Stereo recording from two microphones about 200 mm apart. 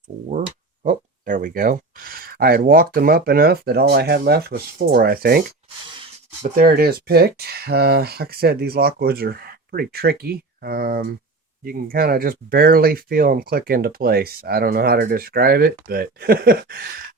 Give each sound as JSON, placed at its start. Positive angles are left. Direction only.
{"t": 0.9, "sound": "speech", "side_deg": -40}
{"t": 6.6, "sound": "speech", "side_deg": -50}